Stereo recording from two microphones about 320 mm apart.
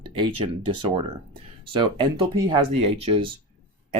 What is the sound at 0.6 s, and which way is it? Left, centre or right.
Speech, right.